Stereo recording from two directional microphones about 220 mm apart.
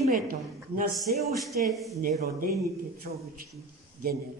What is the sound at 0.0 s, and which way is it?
A woman's voice, 40° right (ahead or behind).